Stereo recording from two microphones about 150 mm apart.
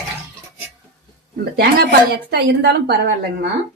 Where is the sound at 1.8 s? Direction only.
90° right.